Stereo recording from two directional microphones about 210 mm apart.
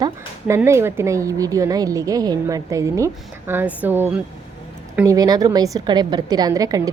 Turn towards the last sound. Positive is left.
turn(degrees=-15)  # may be behind; listen again after turning